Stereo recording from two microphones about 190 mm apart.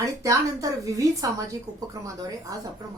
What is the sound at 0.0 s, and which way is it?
A woman's voice, 15° right (ahead or behind).